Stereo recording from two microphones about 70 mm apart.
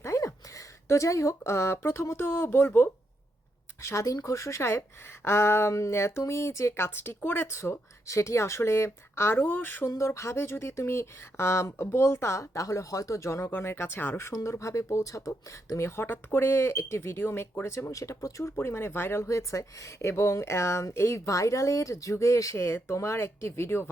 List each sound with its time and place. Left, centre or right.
0.0 s a sound: left
0.9 s speech: left
3.8 s speech: left
10.0 s speech: left
18.5 s speech: left
21.2 s speech: left